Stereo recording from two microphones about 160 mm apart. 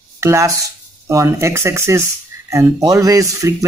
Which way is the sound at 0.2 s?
15° right (ahead or behind).